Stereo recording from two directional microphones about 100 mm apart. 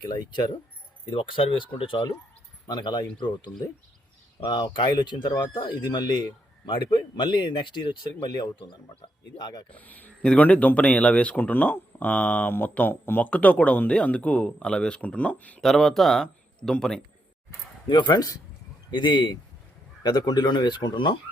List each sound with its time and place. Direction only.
0.1 s speech: 45° left (ahead or behind)
1.1 s speech: 60° left (ahead or behind)
2.6 s speech: 45° left (ahead or behind)
9.7 s speech: 15° left (ahead or behind)
15.6 s speech: centre (ahead or behind)
17.8 s speech: 50° left (ahead or behind)